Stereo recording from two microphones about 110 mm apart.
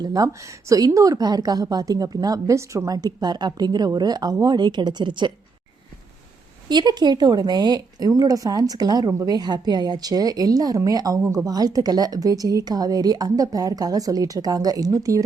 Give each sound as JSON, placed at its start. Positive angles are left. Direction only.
{"t": 0.0, "sound": "speech", "side_deg": -35}
{"t": 6.7, "sound": "speech", "side_deg": -40}